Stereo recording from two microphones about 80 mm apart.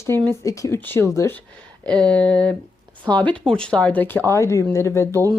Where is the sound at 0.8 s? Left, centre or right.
Left.